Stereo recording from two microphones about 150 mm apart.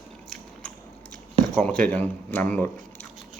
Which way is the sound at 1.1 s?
5° left (ahead or behind).